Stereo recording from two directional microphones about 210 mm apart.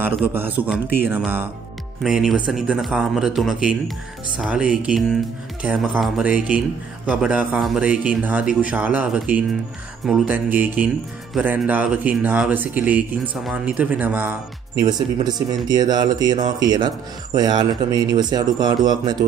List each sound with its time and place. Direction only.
0.0 s a man's voice: 10° right (ahead or behind)
14.8 s speech: 20° right (ahead or behind)